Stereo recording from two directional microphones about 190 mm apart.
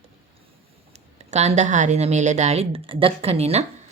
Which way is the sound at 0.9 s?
35° right (ahead or behind).